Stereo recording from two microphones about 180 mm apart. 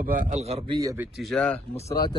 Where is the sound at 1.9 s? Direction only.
20° left (ahead or behind).